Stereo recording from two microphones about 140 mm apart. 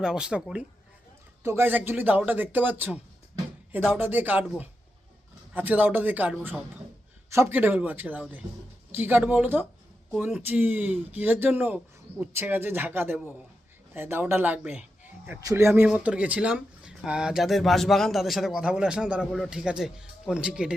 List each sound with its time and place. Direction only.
0.0 s speech: 5° right (ahead or behind)